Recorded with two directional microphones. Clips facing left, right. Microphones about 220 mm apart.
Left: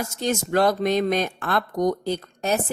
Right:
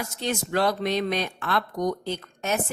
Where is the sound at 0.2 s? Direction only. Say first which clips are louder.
Left 4 dB; 45° left (ahead or behind).